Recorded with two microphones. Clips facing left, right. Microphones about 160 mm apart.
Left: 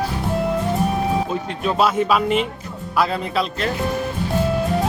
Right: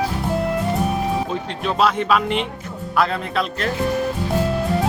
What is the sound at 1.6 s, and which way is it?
Speech, 5° left (ahead or behind).